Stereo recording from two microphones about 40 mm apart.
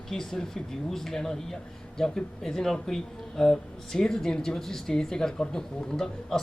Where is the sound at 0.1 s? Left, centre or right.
Centre.